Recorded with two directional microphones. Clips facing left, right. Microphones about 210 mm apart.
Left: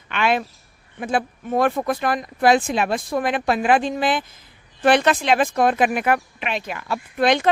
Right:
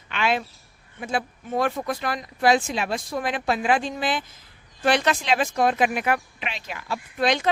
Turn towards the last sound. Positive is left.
turn(degrees=55)  # may be behind; listen again after turning